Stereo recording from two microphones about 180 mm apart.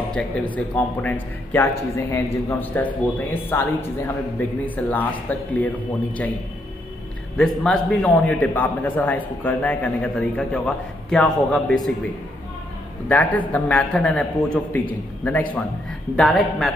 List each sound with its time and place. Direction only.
0.1 s a man's voice: 10° left (ahead or behind)
7.3 s a man's voice: 5° left (ahead or behind)
13.1 s a man's voice: 10° left (ahead or behind)